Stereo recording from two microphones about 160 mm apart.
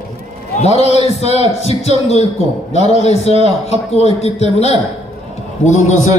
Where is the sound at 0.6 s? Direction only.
40° left (ahead or behind).